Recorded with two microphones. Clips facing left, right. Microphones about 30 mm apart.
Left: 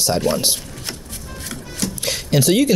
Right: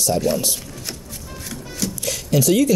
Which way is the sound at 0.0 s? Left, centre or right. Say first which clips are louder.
Left 1 dB; left.